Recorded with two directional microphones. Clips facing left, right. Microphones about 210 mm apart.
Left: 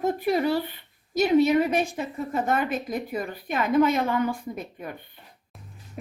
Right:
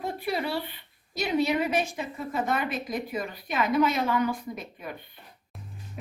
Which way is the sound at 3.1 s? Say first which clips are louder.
Left 3 dB; 55° left (ahead or behind).